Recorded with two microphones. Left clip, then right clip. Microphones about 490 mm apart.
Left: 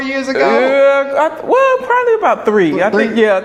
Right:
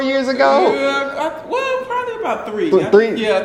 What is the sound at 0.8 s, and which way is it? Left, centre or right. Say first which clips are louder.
Music: left 8 dB; left.